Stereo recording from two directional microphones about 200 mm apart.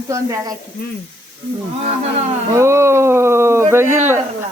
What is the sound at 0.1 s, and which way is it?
Speech, 15° right (ahead or behind).